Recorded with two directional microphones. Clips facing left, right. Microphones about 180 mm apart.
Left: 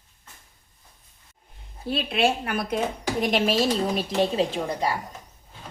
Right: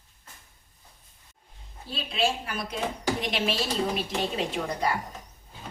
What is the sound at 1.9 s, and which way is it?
Speech, 60° left (ahead or behind).